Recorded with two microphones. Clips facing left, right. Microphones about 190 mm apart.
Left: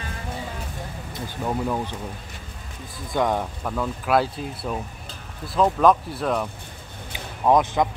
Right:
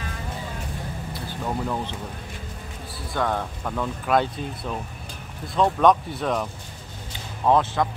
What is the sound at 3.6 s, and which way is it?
Speech, 5° left (ahead or behind).